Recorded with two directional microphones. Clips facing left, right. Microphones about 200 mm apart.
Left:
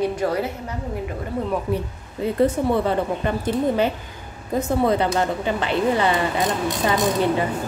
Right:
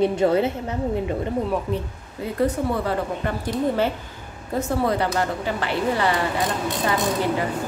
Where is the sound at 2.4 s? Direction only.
25° left (ahead or behind).